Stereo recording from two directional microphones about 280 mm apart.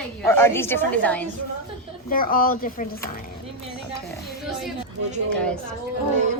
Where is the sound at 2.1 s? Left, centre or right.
Left.